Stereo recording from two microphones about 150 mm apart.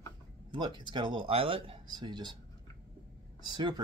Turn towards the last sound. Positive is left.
turn(degrees=-30)  # may be behind; listen again after turning